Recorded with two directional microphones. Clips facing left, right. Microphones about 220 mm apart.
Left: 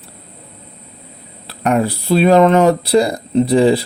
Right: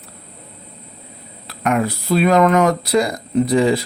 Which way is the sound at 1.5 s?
30° left (ahead or behind).